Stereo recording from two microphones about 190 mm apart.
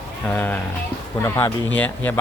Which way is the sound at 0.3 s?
10° left (ahead or behind).